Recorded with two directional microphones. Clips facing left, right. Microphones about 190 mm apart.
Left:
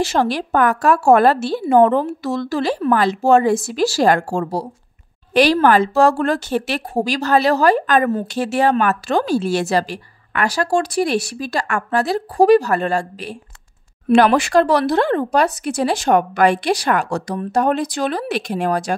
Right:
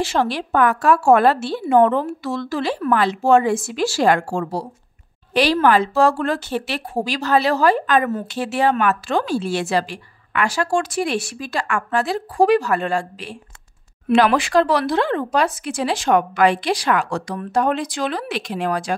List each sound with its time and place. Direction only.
0.0 s a woman's voice: 40° left (ahead or behind)
8.1 s a woman's voice: 30° left (ahead or behind)
8.4 s a woman's voice: 40° left (ahead or behind)